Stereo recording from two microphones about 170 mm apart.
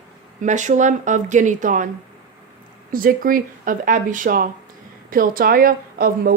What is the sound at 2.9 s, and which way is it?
A woman's voice, 55° right (ahead or behind).